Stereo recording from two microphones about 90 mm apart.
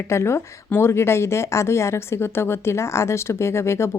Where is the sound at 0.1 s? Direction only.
30° left (ahead or behind).